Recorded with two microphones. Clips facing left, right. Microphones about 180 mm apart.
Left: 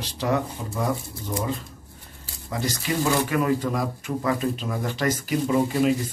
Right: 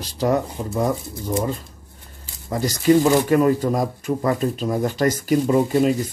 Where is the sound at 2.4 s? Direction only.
40° right (ahead or behind).